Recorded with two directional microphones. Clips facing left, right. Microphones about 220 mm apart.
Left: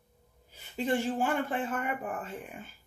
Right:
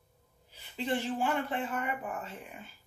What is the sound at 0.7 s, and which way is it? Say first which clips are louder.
Speech: left 3 dB; 45° left (ahead or behind).